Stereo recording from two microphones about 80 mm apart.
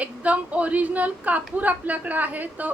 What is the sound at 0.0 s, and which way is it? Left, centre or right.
A woman's voice, centre.